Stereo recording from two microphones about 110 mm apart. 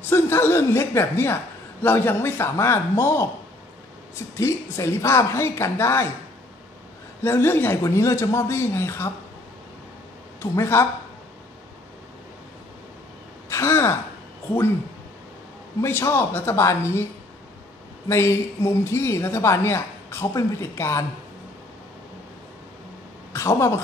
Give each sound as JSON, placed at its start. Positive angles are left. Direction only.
{"t": 0.1, "sound": "a woman's voice", "side_deg": 20}
{"t": 4.4, "sound": "a woman's voice", "side_deg": 25}
{"t": 7.2, "sound": "a woman's voice", "side_deg": 20}
{"t": 10.4, "sound": "a woman's voice", "side_deg": 25}
{"t": 13.5, "sound": "speech", "side_deg": 25}
{"t": 15.8, "sound": "a woman's voice", "side_deg": 25}
{"t": 18.0, "sound": "a woman's voice", "side_deg": 25}
{"t": 23.3, "sound": "a woman's voice", "side_deg": 25}